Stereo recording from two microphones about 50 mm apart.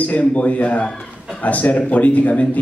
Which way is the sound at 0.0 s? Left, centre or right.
Left.